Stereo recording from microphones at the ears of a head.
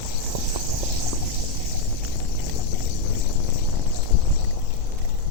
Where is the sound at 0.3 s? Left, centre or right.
Right.